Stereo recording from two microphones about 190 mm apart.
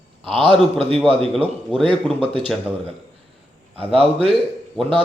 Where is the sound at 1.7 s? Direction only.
25° right (ahead or behind).